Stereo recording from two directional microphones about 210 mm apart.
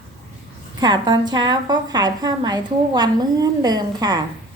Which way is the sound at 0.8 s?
20° right (ahead or behind).